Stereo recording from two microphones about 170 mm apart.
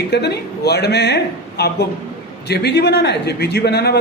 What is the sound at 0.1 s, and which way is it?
A man's voice, 75° left (ahead or behind).